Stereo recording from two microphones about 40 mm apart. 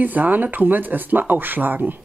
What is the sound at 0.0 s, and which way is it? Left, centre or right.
Speech, right.